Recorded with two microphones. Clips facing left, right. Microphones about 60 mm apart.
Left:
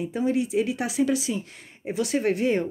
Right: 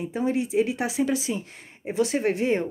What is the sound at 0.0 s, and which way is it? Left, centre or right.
Speech, right.